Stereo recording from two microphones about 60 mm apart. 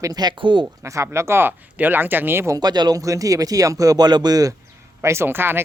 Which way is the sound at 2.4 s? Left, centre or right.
Right.